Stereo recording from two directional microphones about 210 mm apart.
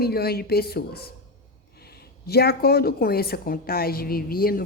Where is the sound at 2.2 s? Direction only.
50° left (ahead or behind).